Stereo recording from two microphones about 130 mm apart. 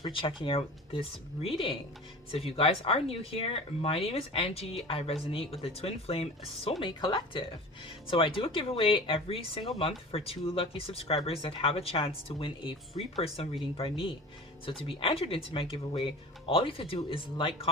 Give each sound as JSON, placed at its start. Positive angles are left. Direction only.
{"t": 0.0, "sound": "speech", "side_deg": 40}